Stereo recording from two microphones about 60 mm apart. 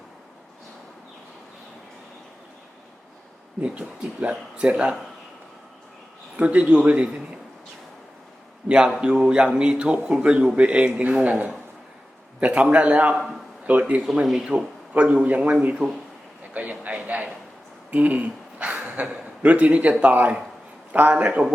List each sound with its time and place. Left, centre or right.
3.6 s speech: right
6.3 s speech: right
8.6 s a man's voice: centre
12.4 s a man's voice: right
14.3 s a man's voice: centre
14.9 s speech: right
16.6 s a sound: right
19.4 s speech: right
21.2 s speech: centre